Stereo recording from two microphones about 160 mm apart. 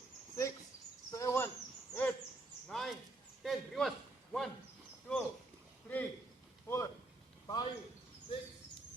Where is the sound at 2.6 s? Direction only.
Centre (ahead or behind).